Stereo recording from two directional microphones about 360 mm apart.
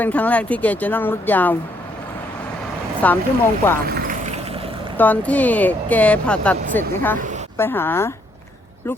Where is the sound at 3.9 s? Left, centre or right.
Right.